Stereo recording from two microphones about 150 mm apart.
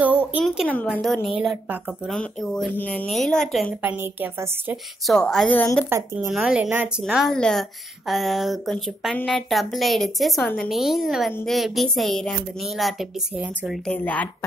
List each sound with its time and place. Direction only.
0.0 s a sound: 10° right (ahead or behind)
0.7 s a woman's voice: 10° left (ahead or behind)
1.0 s speech: centre (ahead or behind)
3.8 s a woman's voice: 15° right (ahead or behind)
5.0 s speech: 5° left (ahead or behind)
5.9 s a woman's voice: 15° right (ahead or behind)
6.3 s a woman's voice: 5° right (ahead or behind)
13.9 s a woman's voice: 10° left (ahead or behind)